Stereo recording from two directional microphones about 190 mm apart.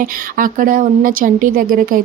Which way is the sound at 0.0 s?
45° right (ahead or behind).